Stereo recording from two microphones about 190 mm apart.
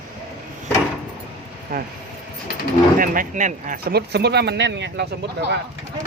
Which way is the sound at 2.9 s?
45° right (ahead or behind).